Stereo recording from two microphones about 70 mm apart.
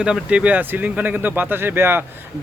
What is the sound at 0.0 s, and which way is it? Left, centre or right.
Speech, centre.